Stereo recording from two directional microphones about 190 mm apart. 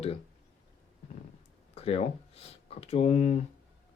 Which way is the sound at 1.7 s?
30° left (ahead or behind).